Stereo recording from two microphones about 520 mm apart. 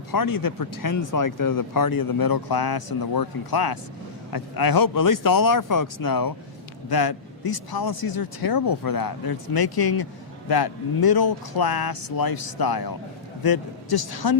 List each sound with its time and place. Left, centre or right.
0.1 s a man's voice: left